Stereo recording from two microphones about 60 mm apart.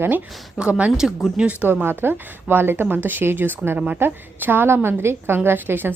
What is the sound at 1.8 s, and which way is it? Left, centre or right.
A woman's voice, right.